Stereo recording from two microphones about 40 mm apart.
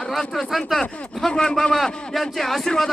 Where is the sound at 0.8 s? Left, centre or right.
Centre.